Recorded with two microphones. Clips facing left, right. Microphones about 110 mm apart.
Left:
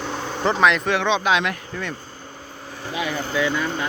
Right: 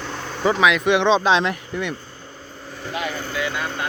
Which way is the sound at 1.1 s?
30° right (ahead or behind).